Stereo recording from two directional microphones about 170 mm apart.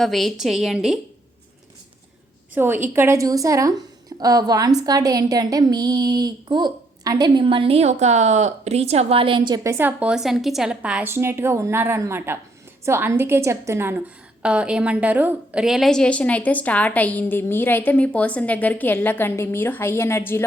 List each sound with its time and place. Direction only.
0.0 s a woman's voice: centre (ahead or behind)
2.6 s a woman's voice: 10° right (ahead or behind)
9.7 s a woman's voice: 10° right (ahead or behind); by 20.4 s 15° left (ahead or behind)